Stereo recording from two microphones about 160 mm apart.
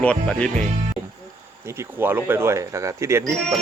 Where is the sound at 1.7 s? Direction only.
15° right (ahead or behind).